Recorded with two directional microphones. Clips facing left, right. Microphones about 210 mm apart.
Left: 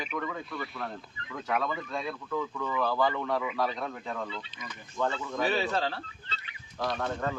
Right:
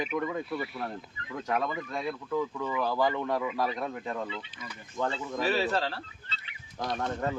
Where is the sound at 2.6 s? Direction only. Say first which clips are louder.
Left 2 dB; 15° right (ahead or behind).